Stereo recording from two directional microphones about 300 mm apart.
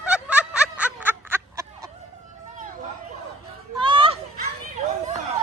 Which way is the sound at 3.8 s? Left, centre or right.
Centre.